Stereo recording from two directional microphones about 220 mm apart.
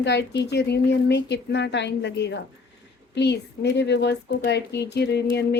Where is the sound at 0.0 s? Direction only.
55° left (ahead or behind).